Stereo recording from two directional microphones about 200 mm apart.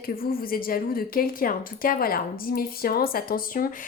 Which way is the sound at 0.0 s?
45° left (ahead or behind).